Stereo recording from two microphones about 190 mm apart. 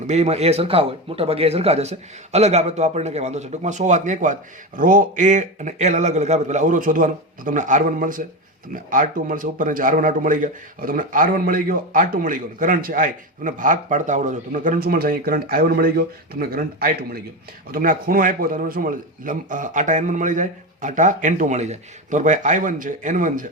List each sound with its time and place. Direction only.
0.1 s a man's voice: 35° right (ahead or behind)